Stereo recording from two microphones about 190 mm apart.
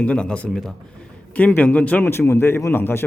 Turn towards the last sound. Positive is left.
turn(degrees=10)  # may be behind; listen again after turning